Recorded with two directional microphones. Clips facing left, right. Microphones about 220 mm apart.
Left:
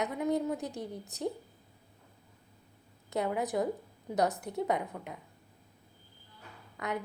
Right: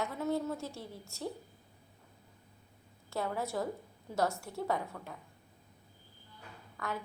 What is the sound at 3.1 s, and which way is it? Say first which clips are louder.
A woman's voice: left 4 dB; 20° left (ahead or behind).